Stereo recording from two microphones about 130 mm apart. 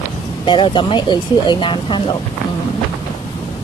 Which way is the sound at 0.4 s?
40° left (ahead or behind).